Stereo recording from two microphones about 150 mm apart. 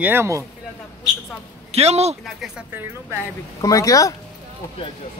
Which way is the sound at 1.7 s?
45° right (ahead or behind).